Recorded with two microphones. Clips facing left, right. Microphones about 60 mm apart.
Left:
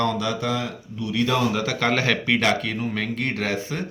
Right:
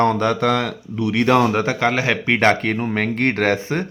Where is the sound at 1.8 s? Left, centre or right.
Centre.